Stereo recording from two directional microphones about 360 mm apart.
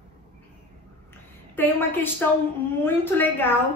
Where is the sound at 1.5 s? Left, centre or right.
Centre.